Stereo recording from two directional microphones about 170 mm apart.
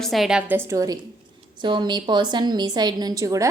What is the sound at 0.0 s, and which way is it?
A woman's voice, centre (ahead or behind).